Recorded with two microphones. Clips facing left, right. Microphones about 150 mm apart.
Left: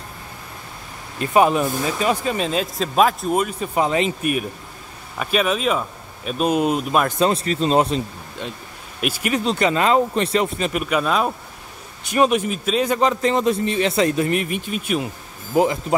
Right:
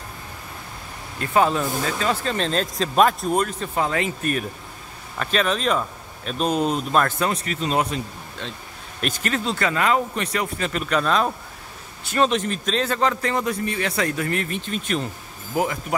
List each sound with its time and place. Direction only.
1.2 s speech: 20° left (ahead or behind)
7.2 s speech: 30° left (ahead or behind)
9.0 s speech: 10° left (ahead or behind)
10.7 s speech: 10° left (ahead or behind)
15.5 s speech: 25° left (ahead or behind)